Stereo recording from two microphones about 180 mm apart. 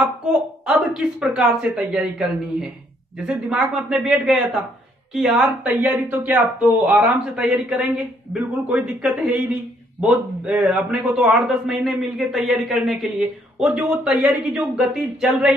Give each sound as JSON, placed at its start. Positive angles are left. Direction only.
{"t": 0.0, "sound": "a man's voice", "side_deg": -5}